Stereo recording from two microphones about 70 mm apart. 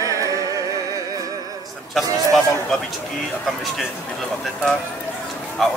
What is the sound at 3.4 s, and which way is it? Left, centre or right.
Speech, centre.